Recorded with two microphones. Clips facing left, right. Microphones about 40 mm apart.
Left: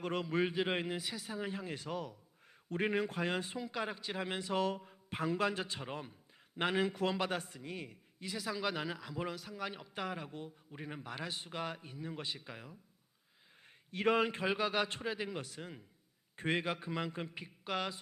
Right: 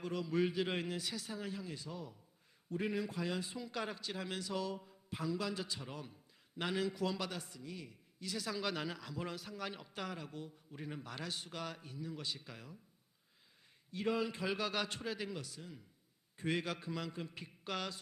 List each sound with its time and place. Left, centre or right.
0.0 s speech: left
0.4 s a man's voice: left
1.5 s speech: left
2.6 s speech: left
3.6 s a man's voice: centre
4.5 s speech: left
8.4 s speech: centre
9.3 s a man's voice: centre
13.9 s speech: left
14.4 s a man's voice: left
15.4 s a man's voice: left
16.8 s speech: left
17.3 s speech: centre